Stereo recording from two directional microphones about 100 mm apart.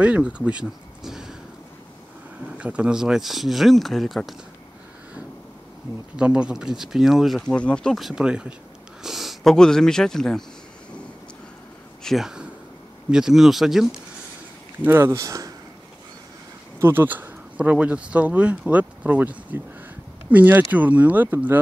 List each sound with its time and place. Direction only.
0.0 s speech: 10° right (ahead or behind)
2.4 s speech: 10° right (ahead or behind)
6.1 s speech: 10° right (ahead or behind); by 10.4 s 5° left (ahead or behind)
12.0 s speech: centre (ahead or behind)
14.8 s speech: 25° right (ahead or behind)
16.8 s speech: 20° right (ahead or behind)